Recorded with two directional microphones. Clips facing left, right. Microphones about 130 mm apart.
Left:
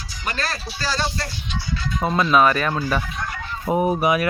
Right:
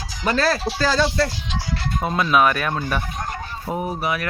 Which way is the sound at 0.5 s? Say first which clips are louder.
Right 6 dB; 90° right.